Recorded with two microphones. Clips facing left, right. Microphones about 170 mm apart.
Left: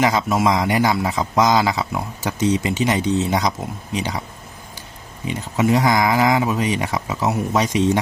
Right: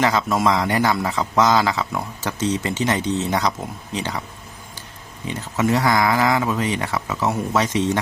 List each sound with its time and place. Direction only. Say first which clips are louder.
0.0 s speech: left 1 dB; 15° left (ahead or behind)
5.3 s speech: left 2 dB; 15° left (ahead or behind)